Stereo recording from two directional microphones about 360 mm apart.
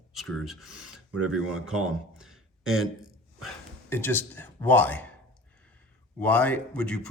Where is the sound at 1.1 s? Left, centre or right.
Right.